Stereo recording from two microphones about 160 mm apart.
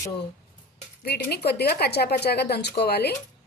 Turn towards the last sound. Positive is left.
turn(degrees=90)